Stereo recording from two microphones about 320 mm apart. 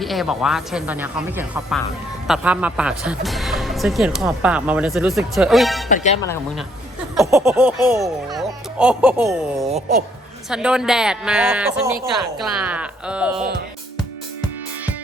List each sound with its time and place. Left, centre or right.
0.0 s speech: centre
5.9 s speech: left
7.2 s speech: centre
9.6 s speech: centre
10.5 s speech: centre